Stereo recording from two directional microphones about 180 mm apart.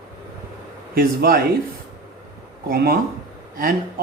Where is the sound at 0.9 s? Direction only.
55° right (ahead or behind).